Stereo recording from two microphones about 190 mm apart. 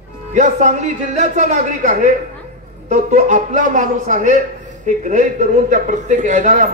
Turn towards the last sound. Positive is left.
turn(degrees=-40)  # may be behind; listen again after turning